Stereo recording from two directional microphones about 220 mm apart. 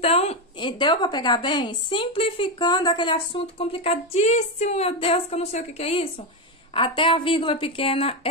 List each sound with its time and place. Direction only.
0.0 s a woman's voice: 30° left (ahead or behind)